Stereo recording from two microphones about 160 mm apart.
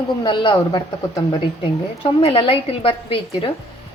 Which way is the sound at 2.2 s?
35° left (ahead or behind).